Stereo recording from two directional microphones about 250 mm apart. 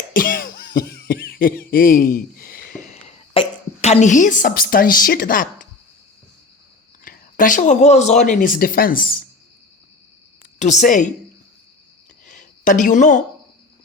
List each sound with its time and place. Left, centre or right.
0.1 s cough: left
7.0 s speech: left
10.6 s a woman's voice: left
12.2 s a sound: left